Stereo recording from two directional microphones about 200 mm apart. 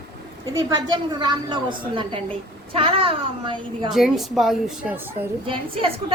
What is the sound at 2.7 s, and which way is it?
Speech, 25° right (ahead or behind).